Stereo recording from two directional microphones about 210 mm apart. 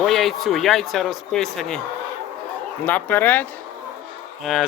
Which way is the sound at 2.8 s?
10° left (ahead or behind).